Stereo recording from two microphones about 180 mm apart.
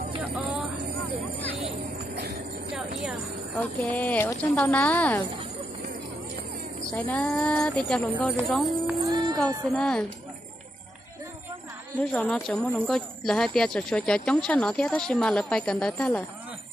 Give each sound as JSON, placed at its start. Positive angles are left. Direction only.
{"t": 3.5, "sound": "speech", "side_deg": 10}
{"t": 6.9, "sound": "speech", "side_deg": 10}
{"t": 9.0, "sound": "music", "side_deg": -25}
{"t": 9.4, "sound": "speech", "side_deg": 5}
{"t": 12.0, "sound": "speech", "side_deg": 5}